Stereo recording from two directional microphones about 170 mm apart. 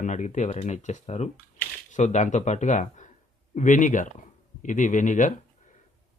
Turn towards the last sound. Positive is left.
turn(degrees=50)  # may be behind; listen again after turning